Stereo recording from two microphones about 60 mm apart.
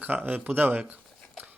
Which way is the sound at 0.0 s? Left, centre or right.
Right.